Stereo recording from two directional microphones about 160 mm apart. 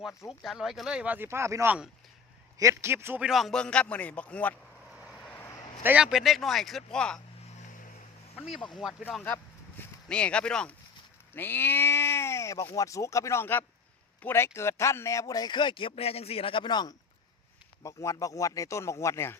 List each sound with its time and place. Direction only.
0.4 s speech: centre (ahead or behind)
3.2 s speech: centre (ahead or behind)
5.1 s vehicle: 10° left (ahead or behind)
5.8 s speech: 10° right (ahead or behind)
8.4 s speech: centre (ahead or behind)
9.1 s speech: 10° left (ahead or behind)